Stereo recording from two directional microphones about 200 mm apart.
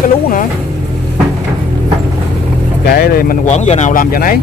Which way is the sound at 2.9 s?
50° left (ahead or behind).